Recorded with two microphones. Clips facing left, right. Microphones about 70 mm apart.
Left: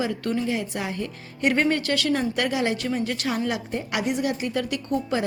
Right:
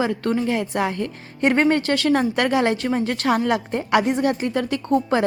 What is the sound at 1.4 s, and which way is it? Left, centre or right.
A woman's voice, right.